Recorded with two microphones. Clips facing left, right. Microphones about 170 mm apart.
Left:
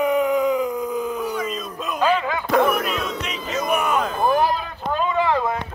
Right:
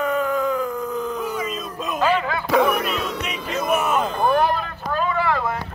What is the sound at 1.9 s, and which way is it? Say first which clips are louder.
Bow-wow: even; 15° left (ahead or behind).